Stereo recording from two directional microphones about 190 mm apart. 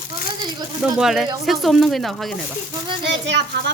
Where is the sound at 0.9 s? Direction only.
Centre (ahead or behind).